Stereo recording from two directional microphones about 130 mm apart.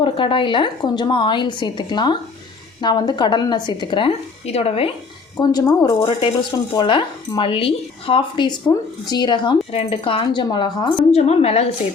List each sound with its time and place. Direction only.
0.0 s a woman's voice: 40° left (ahead or behind)
5.4 s a woman's voice: 30° left (ahead or behind)
6.1 s a woman's voice: 40° left (ahead or behind)
11.1 s a woman's voice: 50° left (ahead or behind)